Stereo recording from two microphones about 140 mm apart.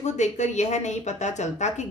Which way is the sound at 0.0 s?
55° left (ahead or behind).